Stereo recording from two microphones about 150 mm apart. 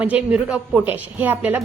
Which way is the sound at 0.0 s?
10° right (ahead or behind).